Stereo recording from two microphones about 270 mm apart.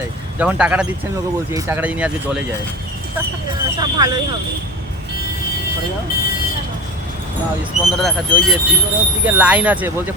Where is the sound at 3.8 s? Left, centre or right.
Centre.